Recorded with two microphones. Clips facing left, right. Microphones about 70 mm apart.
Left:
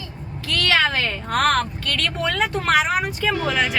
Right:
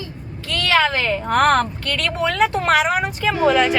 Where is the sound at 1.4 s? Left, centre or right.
Right.